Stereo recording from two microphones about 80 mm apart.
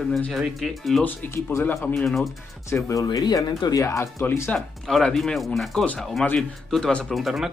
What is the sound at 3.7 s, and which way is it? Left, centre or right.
Speech, left.